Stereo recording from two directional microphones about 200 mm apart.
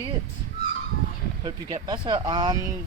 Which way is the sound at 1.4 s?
20° right (ahead or behind).